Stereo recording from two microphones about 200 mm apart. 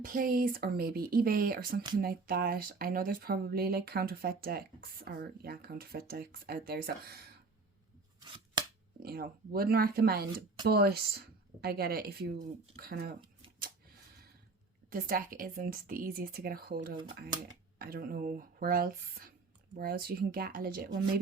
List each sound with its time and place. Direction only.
0.0 s speech: 45° right (ahead or behind)
8.2 s scissors: 20° right (ahead or behind)
9.0 s speech: 50° right (ahead or behind)
14.8 s speech: 45° right (ahead or behind)